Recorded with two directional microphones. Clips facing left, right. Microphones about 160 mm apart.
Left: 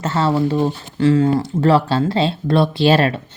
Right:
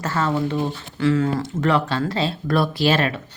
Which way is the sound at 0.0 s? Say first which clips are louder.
Left 4 dB; 25° left (ahead or behind).